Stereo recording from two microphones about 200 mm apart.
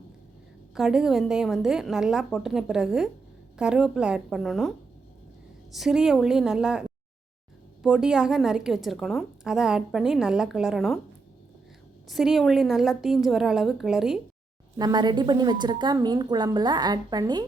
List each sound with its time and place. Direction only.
0.7 s a woman's voice: 5° right (ahead or behind)
5.7 s a woman's voice: centre (ahead or behind)
12.0 s a woman's voice: centre (ahead or behind)
14.8 s a woman's voice: 20° right (ahead or behind)